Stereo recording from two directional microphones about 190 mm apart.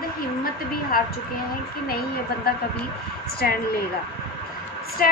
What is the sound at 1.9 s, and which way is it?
Speech, 55° left (ahead or behind).